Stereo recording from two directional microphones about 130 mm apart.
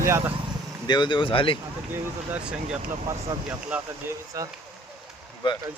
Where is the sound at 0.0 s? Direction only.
20° right (ahead or behind).